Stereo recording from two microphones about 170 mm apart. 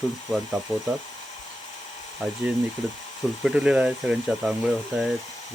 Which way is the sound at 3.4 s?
5° right (ahead or behind).